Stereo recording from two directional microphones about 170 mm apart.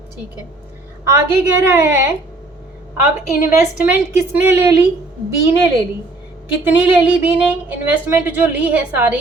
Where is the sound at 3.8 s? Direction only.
10° right (ahead or behind).